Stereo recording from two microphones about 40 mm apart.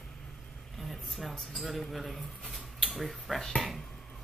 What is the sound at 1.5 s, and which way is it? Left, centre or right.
Speech, centre.